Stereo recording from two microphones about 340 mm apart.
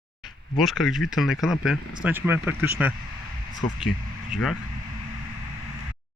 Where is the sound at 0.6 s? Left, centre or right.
Centre.